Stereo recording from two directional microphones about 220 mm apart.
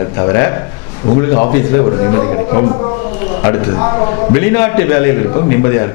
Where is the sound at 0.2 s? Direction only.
15° left (ahead or behind).